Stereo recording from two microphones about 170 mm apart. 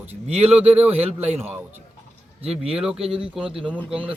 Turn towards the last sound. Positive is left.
turn(degrees=-10)  # may be behind; listen again after turning